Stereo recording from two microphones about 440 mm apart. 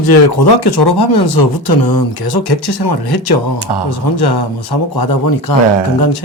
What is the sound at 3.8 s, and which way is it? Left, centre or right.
Speech, left.